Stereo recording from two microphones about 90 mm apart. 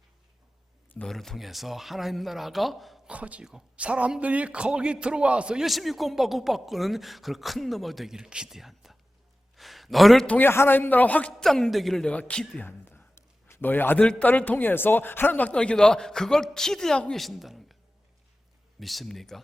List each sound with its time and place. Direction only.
1.0 s speech: 5° left (ahead or behind)
3.1 s speech: 15° right (ahead or behind)
9.6 s a sound: centre (ahead or behind)
10.2 s a man's voice: 20° left (ahead or behind)
12.6 s a sound: 25° left (ahead or behind)
14.1 s a man's voice: 15° left (ahead or behind); by 17.7 s centre (ahead or behind)
18.8 s speech: centre (ahead or behind)